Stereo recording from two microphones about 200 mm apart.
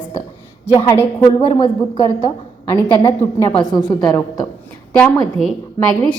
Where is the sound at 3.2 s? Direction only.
10° left (ahead or behind).